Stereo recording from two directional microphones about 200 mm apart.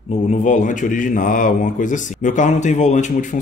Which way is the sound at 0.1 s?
40° left (ahead or behind).